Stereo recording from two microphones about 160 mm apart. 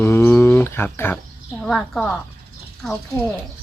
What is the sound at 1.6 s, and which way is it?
Speech, 5° left (ahead or behind).